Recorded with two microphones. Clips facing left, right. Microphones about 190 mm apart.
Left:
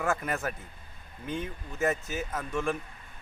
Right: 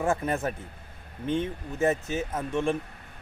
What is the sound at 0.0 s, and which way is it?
Speech, 30° right (ahead or behind).